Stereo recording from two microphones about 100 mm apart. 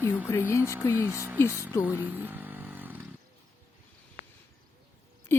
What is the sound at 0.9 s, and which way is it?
Speech, 20° right (ahead or behind).